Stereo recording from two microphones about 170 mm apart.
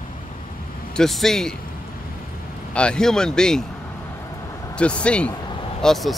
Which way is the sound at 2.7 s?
5° left (ahead or behind).